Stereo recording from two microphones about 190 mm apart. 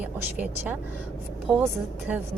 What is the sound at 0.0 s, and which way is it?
A woman's voice, 10° right (ahead or behind).